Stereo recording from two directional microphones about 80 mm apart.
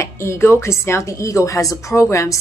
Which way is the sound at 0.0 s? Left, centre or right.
Left.